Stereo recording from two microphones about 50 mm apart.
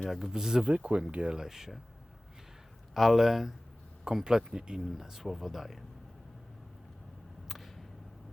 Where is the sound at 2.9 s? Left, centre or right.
Centre.